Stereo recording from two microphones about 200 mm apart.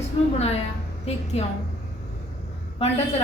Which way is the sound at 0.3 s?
30° left (ahead or behind).